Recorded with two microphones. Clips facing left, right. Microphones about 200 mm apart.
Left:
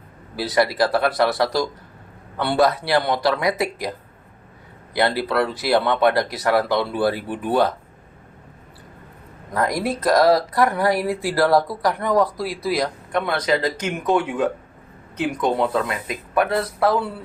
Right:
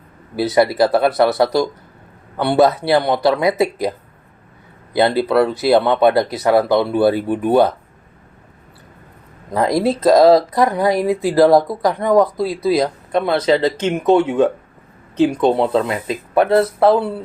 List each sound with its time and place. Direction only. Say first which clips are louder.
0.3 s speech: right 5 dB; 25° right (ahead or behind)
4.9 s speech: right 6 dB; 25° right (ahead or behind)
9.5 s speech: right 6 dB; 25° right (ahead or behind)